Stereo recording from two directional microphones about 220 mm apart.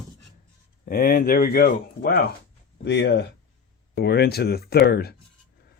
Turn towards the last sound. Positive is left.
turn(degrees=45)  # may be behind; listen again after turning